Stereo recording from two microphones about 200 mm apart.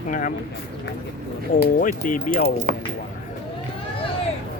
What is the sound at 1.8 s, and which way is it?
Speech, 40° left (ahead or behind).